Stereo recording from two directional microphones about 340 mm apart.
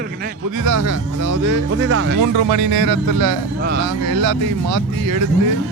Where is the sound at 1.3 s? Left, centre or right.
Right.